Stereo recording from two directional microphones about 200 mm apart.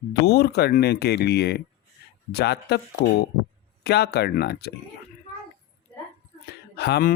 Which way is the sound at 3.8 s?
55° left (ahead or behind).